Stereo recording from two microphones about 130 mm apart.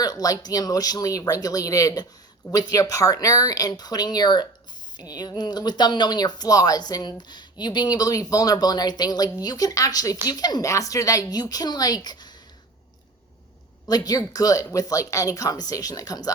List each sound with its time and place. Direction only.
0.0 s speech: 30° left (ahead or behind)
13.8 s speech: 30° left (ahead or behind)